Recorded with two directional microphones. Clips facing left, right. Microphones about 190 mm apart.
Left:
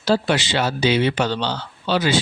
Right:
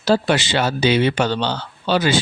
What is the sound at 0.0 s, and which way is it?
Speech, 50° right (ahead or behind).